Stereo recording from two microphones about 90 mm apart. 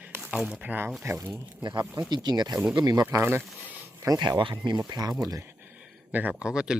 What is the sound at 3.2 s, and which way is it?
Speech, 25° right (ahead or behind).